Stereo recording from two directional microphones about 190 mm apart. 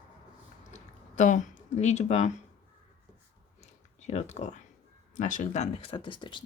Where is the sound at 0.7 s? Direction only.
40° left (ahead or behind).